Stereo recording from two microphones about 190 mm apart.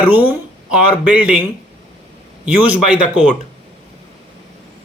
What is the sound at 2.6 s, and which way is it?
Speech, 5° right (ahead or behind).